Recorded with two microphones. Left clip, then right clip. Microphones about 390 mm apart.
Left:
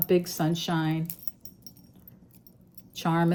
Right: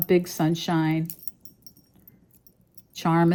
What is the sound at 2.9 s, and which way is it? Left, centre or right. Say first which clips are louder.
Speech: right 4 dB; centre.